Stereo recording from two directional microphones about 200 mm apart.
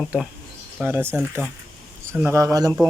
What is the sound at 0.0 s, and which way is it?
Speech, centre (ahead or behind).